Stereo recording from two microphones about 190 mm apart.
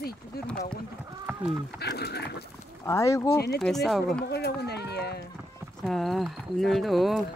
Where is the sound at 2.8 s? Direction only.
15° left (ahead or behind).